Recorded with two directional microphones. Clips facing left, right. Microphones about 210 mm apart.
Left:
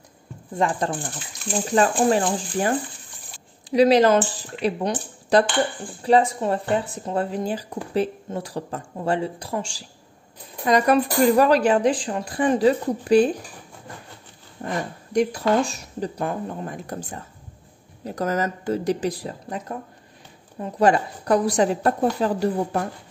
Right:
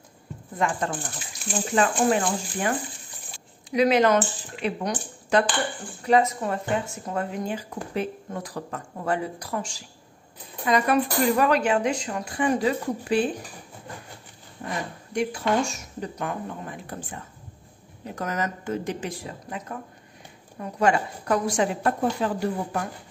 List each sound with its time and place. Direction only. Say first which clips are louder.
0.6 s speech: left 3 dB; 35° left (ahead or behind)
3.7 s speech: left 4 dB; 35° left (ahead or behind)
15.1 s speech: left 4 dB; 40° left (ahead or behind)
20.9 s speech: left 4 dB; 35° left (ahead or behind)